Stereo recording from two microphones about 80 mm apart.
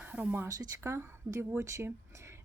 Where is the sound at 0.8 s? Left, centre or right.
Right.